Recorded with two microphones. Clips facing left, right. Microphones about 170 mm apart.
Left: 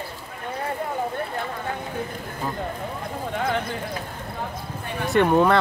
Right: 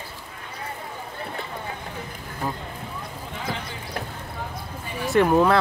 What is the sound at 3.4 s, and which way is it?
Clip-clop, 55° left (ahead or behind).